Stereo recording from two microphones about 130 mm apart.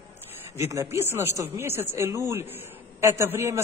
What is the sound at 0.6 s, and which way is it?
Speech, 20° right (ahead or behind).